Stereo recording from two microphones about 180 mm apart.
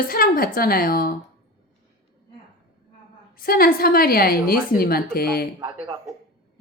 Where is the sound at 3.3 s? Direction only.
55° left (ahead or behind).